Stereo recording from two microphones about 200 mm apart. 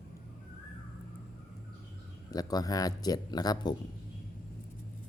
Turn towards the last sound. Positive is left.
turn(degrees=20)  # may be behind; listen again after turning